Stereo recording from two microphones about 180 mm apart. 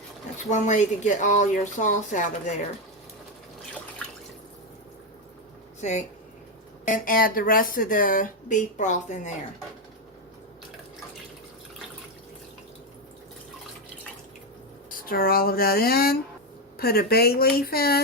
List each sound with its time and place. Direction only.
0.5 s speech: 40° left (ahead or behind)
5.8 s speech: 40° left (ahead or behind)
14.8 s speech: 55° left (ahead or behind)